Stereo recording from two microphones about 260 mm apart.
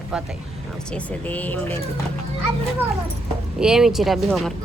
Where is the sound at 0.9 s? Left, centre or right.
Centre.